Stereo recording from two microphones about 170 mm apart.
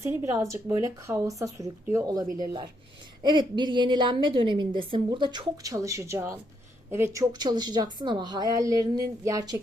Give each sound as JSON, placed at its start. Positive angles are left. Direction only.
{"t": 0.0, "sound": "a woman's voice", "side_deg": -15}